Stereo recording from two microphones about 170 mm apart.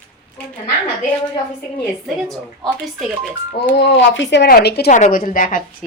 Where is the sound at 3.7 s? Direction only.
85° left.